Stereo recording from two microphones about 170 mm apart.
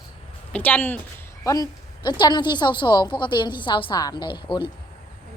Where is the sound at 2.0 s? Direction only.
25° left (ahead or behind).